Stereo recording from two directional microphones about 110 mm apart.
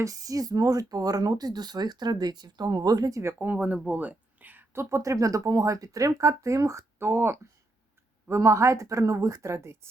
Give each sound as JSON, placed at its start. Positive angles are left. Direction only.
{"t": 0.0, "sound": "speech", "side_deg": -30}
{"t": 3.3, "sound": "speech", "side_deg": -15}